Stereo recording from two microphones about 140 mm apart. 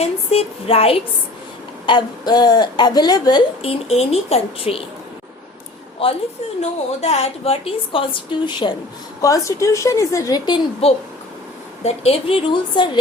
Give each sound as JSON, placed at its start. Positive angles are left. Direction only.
{"t": 0.0, "sound": "a woman's voice", "side_deg": 45}
{"t": 1.9, "sound": "a woman's voice", "side_deg": 30}
{"t": 3.6, "sound": "a woman's voice", "side_deg": 45}
{"t": 6.0, "sound": "a woman's voice", "side_deg": 40}
{"t": 9.2, "sound": "a woman's voice", "side_deg": 20}
{"t": 10.8, "sound": "a woman's voice", "side_deg": 45}